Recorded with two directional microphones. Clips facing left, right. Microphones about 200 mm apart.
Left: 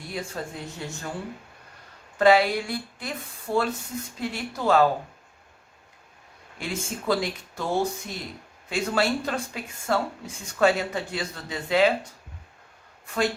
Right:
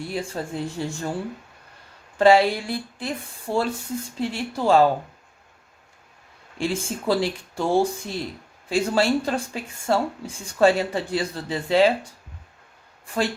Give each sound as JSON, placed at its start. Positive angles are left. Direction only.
{"t": 0.1, "sound": "speech", "side_deg": -30}
{"t": 2.1, "sound": "speech", "side_deg": -30}
{"t": 6.6, "sound": "speech", "side_deg": -30}